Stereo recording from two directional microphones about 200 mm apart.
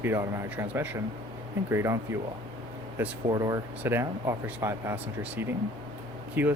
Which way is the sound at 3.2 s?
20° right (ahead or behind).